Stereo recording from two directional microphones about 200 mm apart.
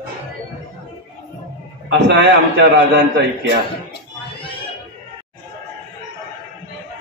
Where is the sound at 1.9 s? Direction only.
60° right (ahead or behind).